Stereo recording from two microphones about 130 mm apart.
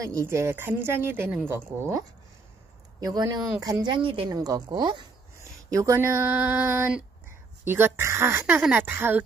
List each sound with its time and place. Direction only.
0.0 s a woman's voice: 25° right (ahead or behind)
3.0 s a woman's voice: 30° right (ahead or behind)
4.3 s a woman's voice: 30° right (ahead or behind)
5.4 s speech: 25° right (ahead or behind)